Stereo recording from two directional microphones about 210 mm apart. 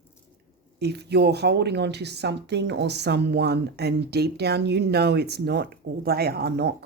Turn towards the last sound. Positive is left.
turn(degrees=-50)  # may be behind; listen again after turning